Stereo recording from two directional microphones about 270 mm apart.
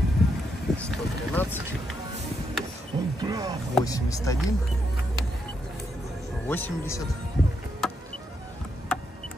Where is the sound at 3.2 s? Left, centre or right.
Centre.